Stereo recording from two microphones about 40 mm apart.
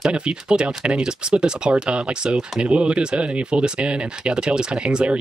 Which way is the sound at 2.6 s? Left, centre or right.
Right.